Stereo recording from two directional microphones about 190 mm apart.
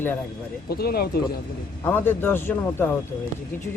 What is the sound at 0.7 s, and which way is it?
Speech, 55° left (ahead or behind).